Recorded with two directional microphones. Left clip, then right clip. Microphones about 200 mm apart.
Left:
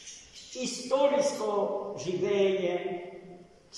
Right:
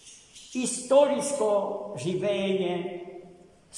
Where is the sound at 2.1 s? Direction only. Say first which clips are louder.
Right 3 dB; 55° right (ahead or behind).